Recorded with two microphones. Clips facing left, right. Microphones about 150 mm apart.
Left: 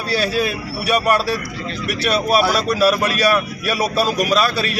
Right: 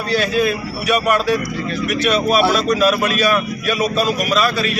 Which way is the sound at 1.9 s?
35° left (ahead or behind).